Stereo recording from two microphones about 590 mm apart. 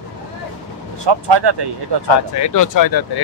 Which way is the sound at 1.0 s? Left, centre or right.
Right.